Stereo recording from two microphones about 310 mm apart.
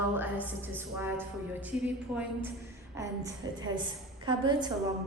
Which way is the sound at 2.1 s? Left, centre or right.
Centre.